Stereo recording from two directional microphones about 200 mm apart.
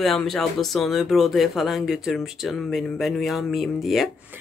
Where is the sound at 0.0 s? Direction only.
Centre (ahead or behind).